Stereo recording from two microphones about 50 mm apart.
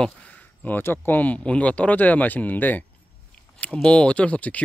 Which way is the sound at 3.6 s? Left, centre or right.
Left.